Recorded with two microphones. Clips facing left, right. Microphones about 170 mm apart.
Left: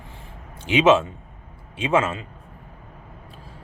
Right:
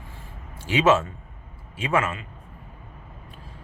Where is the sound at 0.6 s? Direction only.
20° left (ahead or behind).